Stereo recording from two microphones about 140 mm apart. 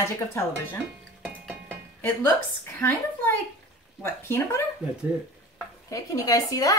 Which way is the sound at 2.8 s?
20° left (ahead or behind).